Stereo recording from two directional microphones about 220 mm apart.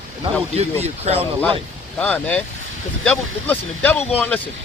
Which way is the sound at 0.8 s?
30° right (ahead or behind).